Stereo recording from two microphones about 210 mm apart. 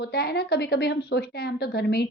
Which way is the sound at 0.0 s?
50° left (ahead or behind).